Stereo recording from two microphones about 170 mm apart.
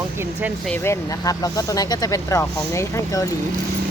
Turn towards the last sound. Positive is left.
turn(degrees=20)  # may be behind; listen again after turning